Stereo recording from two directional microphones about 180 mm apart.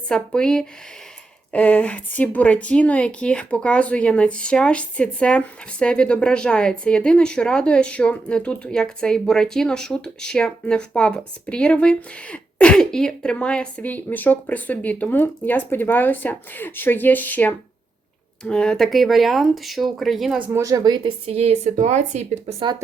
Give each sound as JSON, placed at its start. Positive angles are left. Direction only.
{"t": 0.1, "sound": "speech", "side_deg": 5}
{"t": 20.6, "sound": "speech", "side_deg": -20}